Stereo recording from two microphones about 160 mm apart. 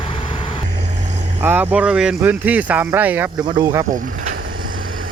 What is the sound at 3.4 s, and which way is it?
Speech, 30° right (ahead or behind).